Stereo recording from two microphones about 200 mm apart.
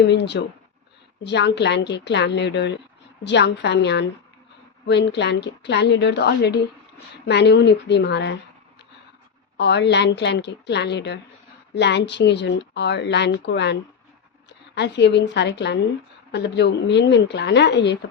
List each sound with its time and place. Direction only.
0.0 s speech: 60° left (ahead or behind)
9.6 s speech: 60° left (ahead or behind)
14.8 s speech: 60° left (ahead or behind)